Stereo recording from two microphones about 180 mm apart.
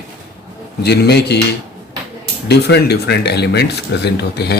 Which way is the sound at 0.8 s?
65° left (ahead or behind).